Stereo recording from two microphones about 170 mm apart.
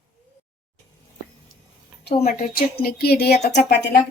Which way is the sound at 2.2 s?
60° left (ahead or behind).